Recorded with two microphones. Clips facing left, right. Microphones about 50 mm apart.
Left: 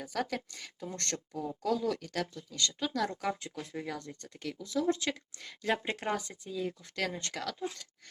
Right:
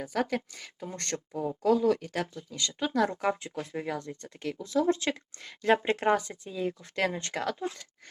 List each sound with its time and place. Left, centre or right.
0.0 s speech: centre
1.1 s speech: right